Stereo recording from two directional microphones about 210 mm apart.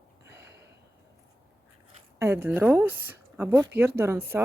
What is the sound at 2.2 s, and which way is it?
Speech, 10° right (ahead or behind).